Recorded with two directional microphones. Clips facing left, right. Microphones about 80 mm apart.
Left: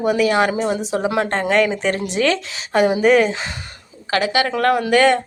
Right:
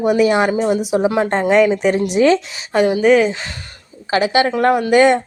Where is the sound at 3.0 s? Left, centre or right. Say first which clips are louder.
Right 2 dB; centre.